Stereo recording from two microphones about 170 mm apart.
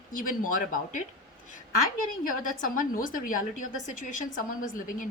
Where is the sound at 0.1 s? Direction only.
50° left (ahead or behind).